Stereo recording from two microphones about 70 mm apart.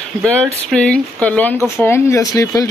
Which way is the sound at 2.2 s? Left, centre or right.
Left.